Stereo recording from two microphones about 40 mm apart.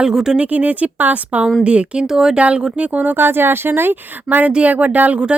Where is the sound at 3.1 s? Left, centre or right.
Right.